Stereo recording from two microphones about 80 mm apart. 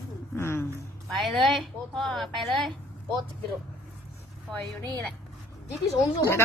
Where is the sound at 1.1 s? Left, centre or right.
Centre.